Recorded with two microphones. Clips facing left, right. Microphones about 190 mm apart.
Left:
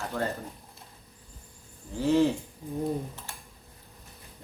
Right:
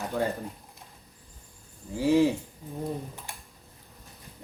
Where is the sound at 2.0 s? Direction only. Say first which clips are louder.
Right 1 dB; 10° right (ahead or behind).